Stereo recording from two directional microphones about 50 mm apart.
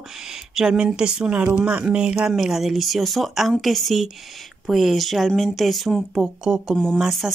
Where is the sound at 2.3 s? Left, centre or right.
Centre.